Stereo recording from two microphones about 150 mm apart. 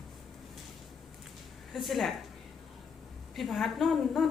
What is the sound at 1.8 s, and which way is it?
Speech, centre (ahead or behind).